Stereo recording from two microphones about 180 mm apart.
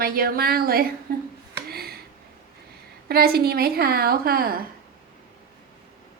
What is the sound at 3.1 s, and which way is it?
A woman's voice, 60° right (ahead or behind).